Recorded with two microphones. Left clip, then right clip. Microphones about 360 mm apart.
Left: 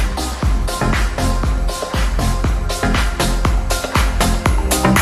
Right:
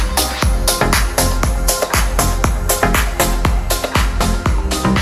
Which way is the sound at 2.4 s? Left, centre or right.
Right.